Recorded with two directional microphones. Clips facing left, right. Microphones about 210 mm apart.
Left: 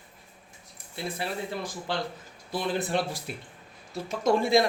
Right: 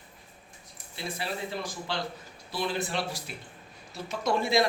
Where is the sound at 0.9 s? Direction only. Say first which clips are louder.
Left 2 dB; 50° left (ahead or behind).